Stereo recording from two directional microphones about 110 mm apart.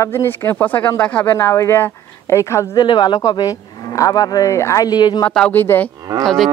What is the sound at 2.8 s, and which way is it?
Speech, 45° left (ahead or behind).